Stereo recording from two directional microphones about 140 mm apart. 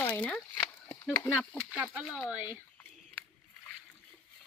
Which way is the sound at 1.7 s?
10° right (ahead or behind).